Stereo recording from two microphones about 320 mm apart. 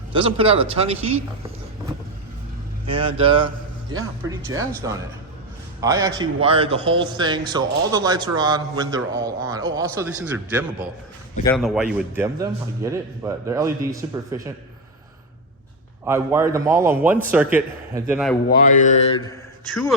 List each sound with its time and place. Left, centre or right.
0.1 s a man's voice: centre
2.8 s a man's voice: centre
16.0 s a man's voice: centre
18.4 s mantra: left
19.3 s a sound: centre